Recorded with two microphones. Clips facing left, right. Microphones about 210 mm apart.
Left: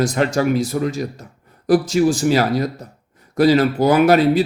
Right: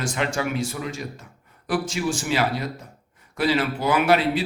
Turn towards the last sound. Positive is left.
turn(degrees=40)  # may be behind; listen again after turning